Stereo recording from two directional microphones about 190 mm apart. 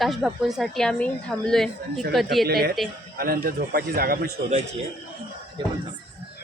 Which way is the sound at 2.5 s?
55° right (ahead or behind).